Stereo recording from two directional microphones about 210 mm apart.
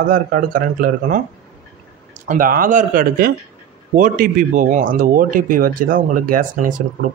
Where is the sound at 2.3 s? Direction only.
40° right (ahead or behind).